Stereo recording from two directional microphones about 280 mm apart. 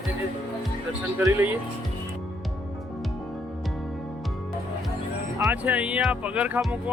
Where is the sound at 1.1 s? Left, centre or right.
Centre.